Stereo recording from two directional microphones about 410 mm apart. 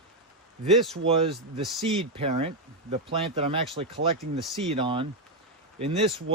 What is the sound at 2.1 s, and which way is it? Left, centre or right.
Speech, centre.